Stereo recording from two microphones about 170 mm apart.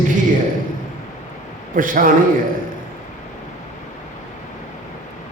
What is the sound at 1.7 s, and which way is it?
Speech, 55° right (ahead or behind).